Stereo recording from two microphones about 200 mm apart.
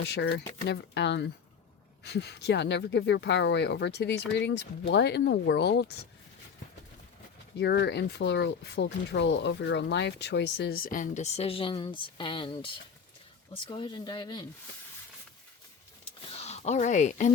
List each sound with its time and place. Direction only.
0.0 s speech: 60° left (ahead or behind)
7.6 s speech: 60° left (ahead or behind); by 14.4 s 20° left (ahead or behind)
16.3 s speech: 30° left (ahead or behind)